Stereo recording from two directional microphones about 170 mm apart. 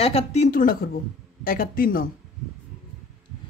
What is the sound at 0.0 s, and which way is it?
Speech, 35° left (ahead or behind).